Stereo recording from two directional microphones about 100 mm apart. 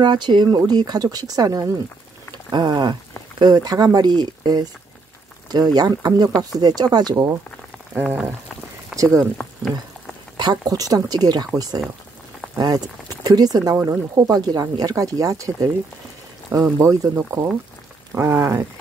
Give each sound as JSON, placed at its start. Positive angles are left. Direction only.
{"t": 0.0, "sound": "speech", "side_deg": -50}
{"t": 7.9, "sound": "rain on surface", "side_deg": -20}
{"t": 8.9, "sound": "speech", "side_deg": -35}
{"t": 10.3, "sound": "speech", "side_deg": -45}